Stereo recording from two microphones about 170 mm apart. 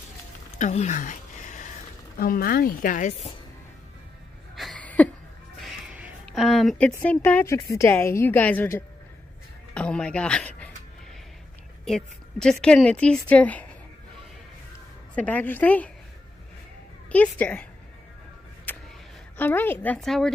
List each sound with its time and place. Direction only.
0.6 s a sound: 45° left (ahead or behind)
2.1 s speech: 60° left (ahead or behind)
4.6 s a sound: 5° left (ahead or behind)
5.6 s music: 10° right (ahead or behind)
6.2 s a sound: centre (ahead or behind)
7.0 s a woman's voice: 10° left (ahead or behind)
11.8 s a woman's voice: 5° left (ahead or behind)
15.1 s a woman's voice: 10° left (ahead or behind)
17.1 s a woman's voice: 10° left (ahead or behind)
18.7 s vehicle: 10° left (ahead or behind)
19.3 s a woman's voice: 10° left (ahead or behind)